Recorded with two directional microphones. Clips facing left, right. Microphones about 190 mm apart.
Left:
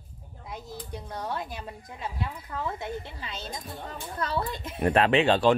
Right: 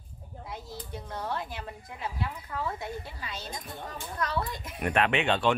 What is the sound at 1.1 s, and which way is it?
A woman's voice, 15° left (ahead or behind).